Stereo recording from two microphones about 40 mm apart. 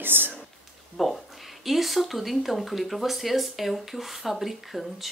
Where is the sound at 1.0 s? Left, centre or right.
Centre.